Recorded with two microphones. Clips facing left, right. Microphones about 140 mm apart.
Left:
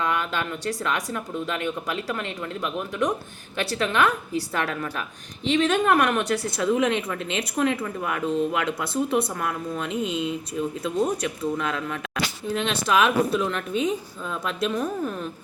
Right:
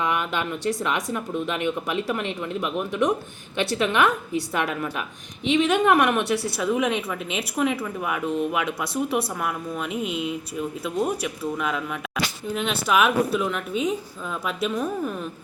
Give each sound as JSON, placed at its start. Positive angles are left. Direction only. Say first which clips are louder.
{"t": 0.0, "sound": "speech", "louder": "right 1 dB", "side_deg": -20}